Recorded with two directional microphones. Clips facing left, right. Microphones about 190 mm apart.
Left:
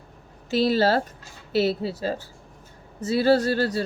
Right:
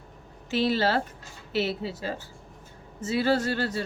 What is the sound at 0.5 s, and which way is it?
A woman's voice, 40° left (ahead or behind).